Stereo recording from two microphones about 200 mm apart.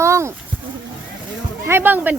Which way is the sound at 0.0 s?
15° right (ahead or behind).